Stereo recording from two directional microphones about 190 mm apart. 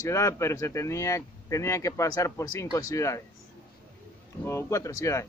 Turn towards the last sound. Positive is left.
turn(degrees=15)  # may be behind; listen again after turning